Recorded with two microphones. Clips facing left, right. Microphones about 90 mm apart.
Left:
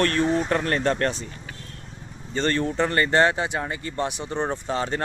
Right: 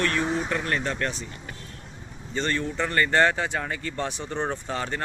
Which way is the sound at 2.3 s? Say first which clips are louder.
Left 4 dB; 45° left (ahead or behind).